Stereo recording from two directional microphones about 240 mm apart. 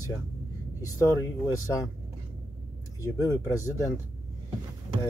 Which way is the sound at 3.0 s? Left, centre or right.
Centre.